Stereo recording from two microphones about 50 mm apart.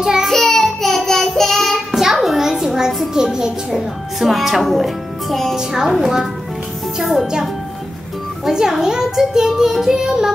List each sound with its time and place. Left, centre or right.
0.0 s child singing: centre
0.3 s child singing: centre
2.0 s music: centre
4.2 s a woman's voice: centre
5.6 s a child's voice: centre
8.5 s a child's voice: centre